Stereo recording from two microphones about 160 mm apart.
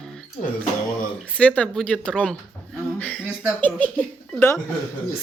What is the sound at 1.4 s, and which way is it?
Speech, 10° left (ahead or behind).